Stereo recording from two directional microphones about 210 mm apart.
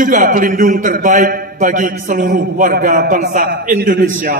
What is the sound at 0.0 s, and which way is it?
A man's voice, 40° right (ahead or behind).